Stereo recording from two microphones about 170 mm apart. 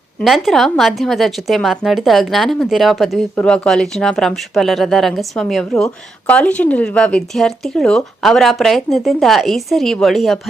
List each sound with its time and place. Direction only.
0.2 s speech: centre (ahead or behind)